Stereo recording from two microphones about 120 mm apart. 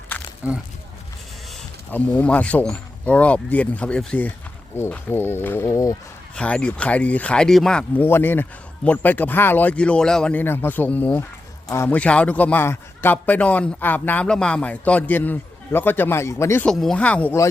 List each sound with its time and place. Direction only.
0.4 s speech: 10° right (ahead or behind)
1.9 s a man's voice: 15° left (ahead or behind)
6.3 s a man's voice: 10° left (ahead or behind)
8.0 s a man's voice: 20° left (ahead or behind)
10.4 s a man's voice: 20° left (ahead or behind)
16.6 s a man's voice: 5° left (ahead or behind)